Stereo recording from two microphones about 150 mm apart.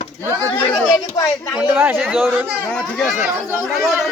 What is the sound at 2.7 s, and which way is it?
Speech, 5° left (ahead or behind).